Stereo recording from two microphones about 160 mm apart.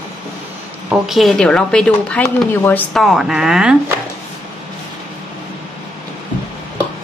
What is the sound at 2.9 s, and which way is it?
Speech, centre (ahead or behind).